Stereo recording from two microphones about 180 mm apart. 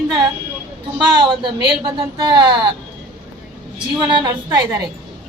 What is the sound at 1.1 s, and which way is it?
Speech, 25° right (ahead or behind).